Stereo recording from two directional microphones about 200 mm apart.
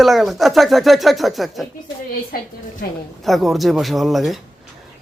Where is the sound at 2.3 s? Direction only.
45° left (ahead or behind).